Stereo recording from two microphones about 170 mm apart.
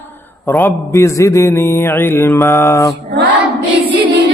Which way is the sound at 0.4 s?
10° left (ahead or behind).